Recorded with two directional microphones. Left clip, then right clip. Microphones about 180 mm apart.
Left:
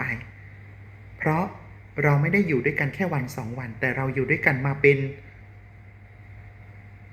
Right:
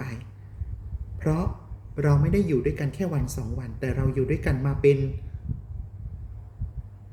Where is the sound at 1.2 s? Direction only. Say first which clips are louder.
Left 4 dB; 25° right (ahead or behind).